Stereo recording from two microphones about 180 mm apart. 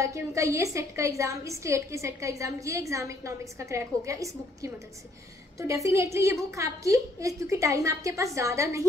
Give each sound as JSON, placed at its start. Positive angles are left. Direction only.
{"t": 0.0, "sound": "a woman's voice", "side_deg": -15}